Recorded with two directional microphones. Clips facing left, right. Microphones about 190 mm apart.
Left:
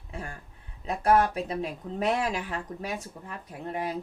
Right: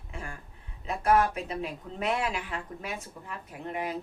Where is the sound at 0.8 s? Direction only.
35° left (ahead or behind).